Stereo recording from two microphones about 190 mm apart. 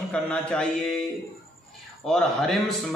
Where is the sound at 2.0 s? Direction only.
5° left (ahead or behind).